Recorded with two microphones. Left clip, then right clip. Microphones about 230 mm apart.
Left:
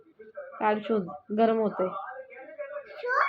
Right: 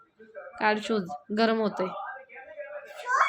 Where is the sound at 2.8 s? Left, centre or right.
Centre.